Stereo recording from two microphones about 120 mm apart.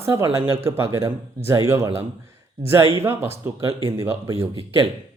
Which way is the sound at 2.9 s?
20° right (ahead or behind).